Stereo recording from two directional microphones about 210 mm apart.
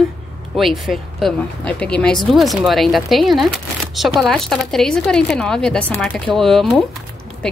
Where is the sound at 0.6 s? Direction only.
Centre (ahead or behind).